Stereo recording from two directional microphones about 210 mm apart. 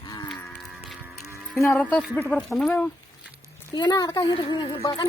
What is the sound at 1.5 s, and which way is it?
Speech, 10° left (ahead or behind).